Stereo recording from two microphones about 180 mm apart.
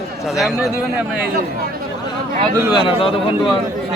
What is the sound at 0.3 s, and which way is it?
Speech, centre (ahead or behind).